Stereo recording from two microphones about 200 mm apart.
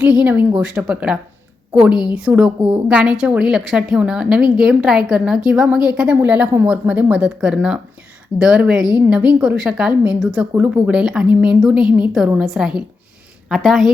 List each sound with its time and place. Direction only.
0.0 s a woman's voice: 5° right (ahead or behind)